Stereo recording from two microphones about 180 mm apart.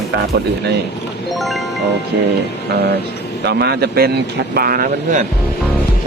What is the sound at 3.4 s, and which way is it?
Speech, 65° right (ahead or behind).